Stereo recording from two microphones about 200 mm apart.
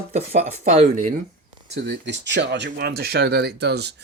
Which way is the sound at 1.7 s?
60° right (ahead or behind).